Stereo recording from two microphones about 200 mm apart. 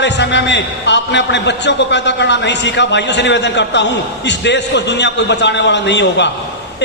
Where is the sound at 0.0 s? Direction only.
60° left (ahead or behind).